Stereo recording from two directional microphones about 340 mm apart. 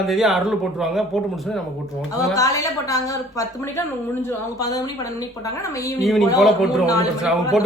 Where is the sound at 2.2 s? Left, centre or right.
Centre.